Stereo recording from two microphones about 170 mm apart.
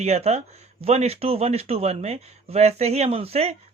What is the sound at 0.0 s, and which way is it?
A man's voice, 40° right (ahead or behind).